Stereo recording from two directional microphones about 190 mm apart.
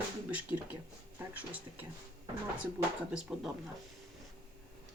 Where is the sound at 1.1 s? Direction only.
10° right (ahead or behind).